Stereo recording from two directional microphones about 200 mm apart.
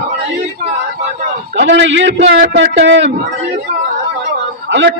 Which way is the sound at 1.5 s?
65° right (ahead or behind).